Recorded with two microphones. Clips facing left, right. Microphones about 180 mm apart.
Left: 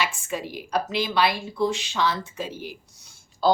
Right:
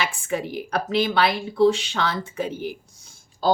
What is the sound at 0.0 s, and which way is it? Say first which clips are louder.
A woman's voice: right 2 dB; 60° right (ahead or behind).